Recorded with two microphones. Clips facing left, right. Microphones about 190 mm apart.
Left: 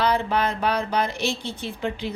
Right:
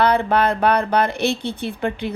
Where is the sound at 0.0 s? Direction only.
60° right (ahead or behind).